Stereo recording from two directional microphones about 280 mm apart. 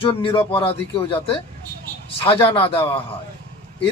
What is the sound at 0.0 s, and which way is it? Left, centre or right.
A man's voice, centre.